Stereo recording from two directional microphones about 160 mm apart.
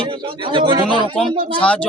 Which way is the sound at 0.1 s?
30° right (ahead or behind).